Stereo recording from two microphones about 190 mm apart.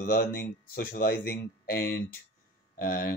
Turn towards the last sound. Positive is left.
turn(degrees=50)  # may be behind; listen again after turning